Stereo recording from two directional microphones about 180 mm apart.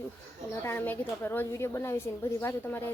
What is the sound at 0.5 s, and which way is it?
A woman's voice, 15° left (ahead or behind).